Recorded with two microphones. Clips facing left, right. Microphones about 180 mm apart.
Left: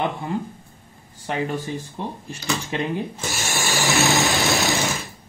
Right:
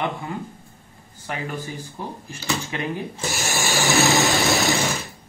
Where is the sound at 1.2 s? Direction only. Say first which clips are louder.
Left 5 dB; 25° left (ahead or behind).